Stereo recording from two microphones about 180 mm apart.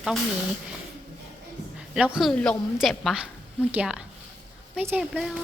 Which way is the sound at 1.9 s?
5° right (ahead or behind).